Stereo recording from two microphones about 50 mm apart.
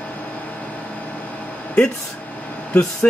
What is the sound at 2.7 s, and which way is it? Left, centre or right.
Speech, left.